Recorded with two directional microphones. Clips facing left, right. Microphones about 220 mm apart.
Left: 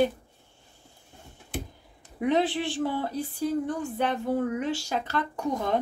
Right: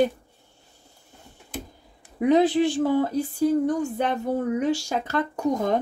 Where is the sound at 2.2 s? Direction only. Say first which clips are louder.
Right 6 dB; 40° right (ahead or behind).